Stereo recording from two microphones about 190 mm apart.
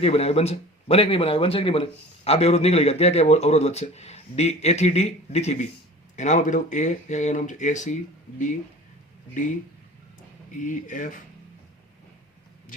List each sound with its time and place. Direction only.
0.0 s speech: 35° left (ahead or behind)
10.6 s speech: 40° left (ahead or behind)